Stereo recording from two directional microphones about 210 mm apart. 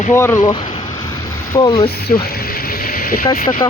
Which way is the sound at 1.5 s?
20° left (ahead or behind).